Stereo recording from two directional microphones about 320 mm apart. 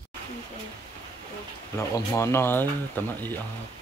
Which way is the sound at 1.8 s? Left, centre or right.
Centre.